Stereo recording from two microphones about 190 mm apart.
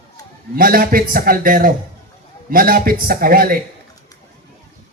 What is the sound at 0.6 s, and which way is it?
A man's voice, 50° right (ahead or behind).